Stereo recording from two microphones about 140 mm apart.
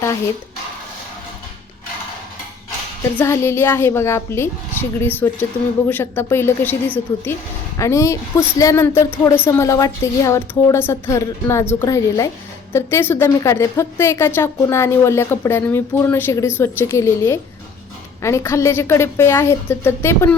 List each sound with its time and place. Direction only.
3.2 s a child's voice: 20° left (ahead or behind)